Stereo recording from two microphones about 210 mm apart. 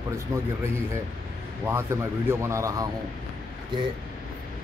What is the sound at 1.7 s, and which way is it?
Speech, 10° right (ahead or behind).